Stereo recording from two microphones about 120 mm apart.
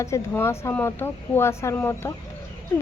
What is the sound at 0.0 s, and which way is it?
Speech, 25° left (ahead or behind).